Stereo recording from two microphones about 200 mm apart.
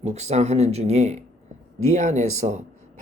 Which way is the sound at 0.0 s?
35° right (ahead or behind).